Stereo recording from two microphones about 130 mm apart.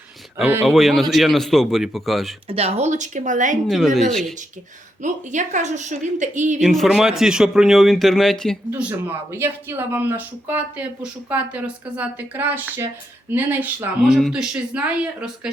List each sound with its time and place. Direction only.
0.6 s a man's voice: centre (ahead or behind)
2.5 s a woman's voice: 50° right (ahead or behind); by 3.6 s 75° right (ahead or behind)
3.7 s a man's voice: centre (ahead or behind)
5.0 s a woman's voice: 70° right (ahead or behind)
6.6 s a man's voice: centre (ahead or behind)
8.7 s speech: 15° right (ahead or behind)
14.0 s a man's voice: 5° right (ahead or behind)